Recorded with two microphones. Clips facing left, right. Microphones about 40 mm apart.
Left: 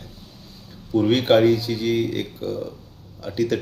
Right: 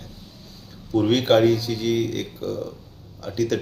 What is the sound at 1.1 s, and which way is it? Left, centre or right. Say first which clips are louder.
Speech: left 1 dB; centre.